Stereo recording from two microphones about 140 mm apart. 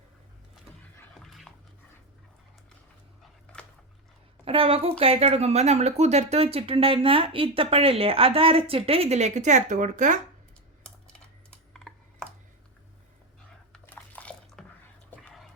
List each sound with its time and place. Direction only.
1.2 s dog: centre (ahead or behind)
4.4 s a woman's voice: 40° right (ahead or behind); by 10.2 s 60° right (ahead or behind)
11.7 s computer keyboard: 5° left (ahead or behind)
13.7 s bathtub: 10° left (ahead or behind)